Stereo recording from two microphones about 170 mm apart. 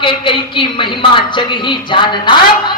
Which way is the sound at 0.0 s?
30° left (ahead or behind).